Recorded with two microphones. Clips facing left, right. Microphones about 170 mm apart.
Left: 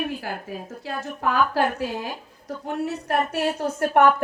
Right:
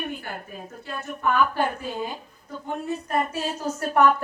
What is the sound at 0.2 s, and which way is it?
A woman's voice, 90° left.